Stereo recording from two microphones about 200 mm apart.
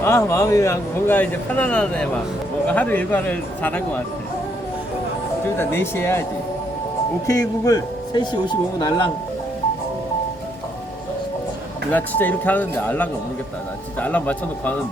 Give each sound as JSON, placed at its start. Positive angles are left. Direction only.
{"t": 0.0, "sound": "speech", "side_deg": 15}
{"t": 5.5, "sound": "speech", "side_deg": 10}
{"t": 7.3, "sound": "speech", "side_deg": 15}
{"t": 11.9, "sound": "speech", "side_deg": 10}